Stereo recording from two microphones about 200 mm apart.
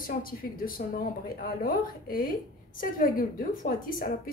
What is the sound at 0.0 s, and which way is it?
A woman's voice, 45° left (ahead or behind).